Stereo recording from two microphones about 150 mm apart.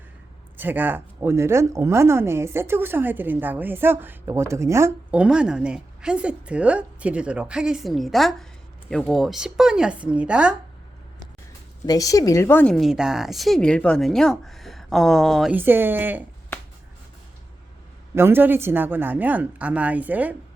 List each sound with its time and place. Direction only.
0.5 s speech: 10° right (ahead or behind)
5.1 s a woman's voice: 5° right (ahead or behind)
11.9 s a woman's voice: 20° left (ahead or behind); by 15.5 s centre (ahead or behind)
15.5 s speech: 15° right (ahead or behind)
18.1 s speech: 15° right (ahead or behind)